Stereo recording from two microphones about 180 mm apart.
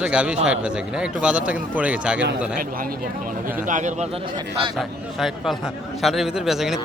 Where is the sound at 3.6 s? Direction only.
45° right (ahead or behind).